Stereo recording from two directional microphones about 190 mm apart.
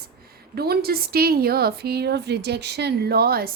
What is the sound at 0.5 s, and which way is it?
A woman's voice, 55° right (ahead or behind).